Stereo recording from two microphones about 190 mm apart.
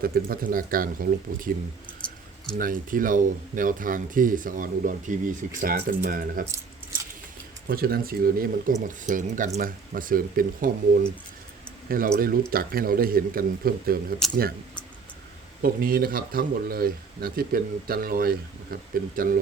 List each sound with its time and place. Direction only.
0.0 s speech: 50° right (ahead or behind)
2.6 s speech: 45° right (ahead or behind)
7.7 s speech: 50° right (ahead or behind)
15.6 s speech: 50° right (ahead or behind)